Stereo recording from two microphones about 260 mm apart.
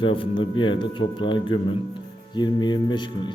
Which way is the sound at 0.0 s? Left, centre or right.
Centre.